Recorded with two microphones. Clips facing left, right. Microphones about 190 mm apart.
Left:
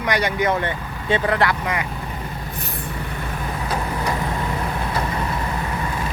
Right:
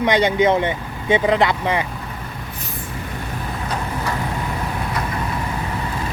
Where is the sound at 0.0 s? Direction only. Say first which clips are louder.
Right 5 dB; 25° right (ahead or behind).